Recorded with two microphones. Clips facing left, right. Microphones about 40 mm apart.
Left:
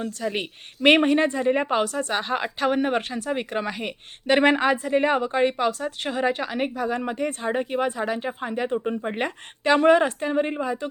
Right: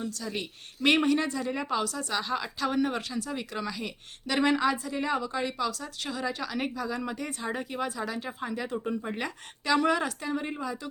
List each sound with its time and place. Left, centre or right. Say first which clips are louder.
0.1 s speech: left 7 dB; left